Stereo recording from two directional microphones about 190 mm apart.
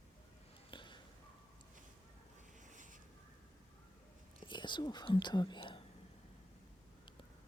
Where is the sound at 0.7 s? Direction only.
25° left (ahead or behind).